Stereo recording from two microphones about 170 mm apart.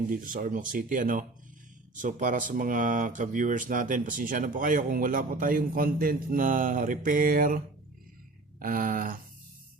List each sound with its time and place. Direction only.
0.1 s speech: 55° right (ahead or behind)